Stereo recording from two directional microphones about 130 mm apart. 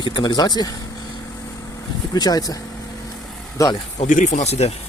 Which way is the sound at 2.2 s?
30° left (ahead or behind).